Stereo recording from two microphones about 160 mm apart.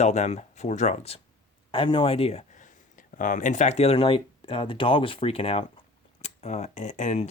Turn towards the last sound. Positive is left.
turn(degrees=45)  # may be behind; listen again after turning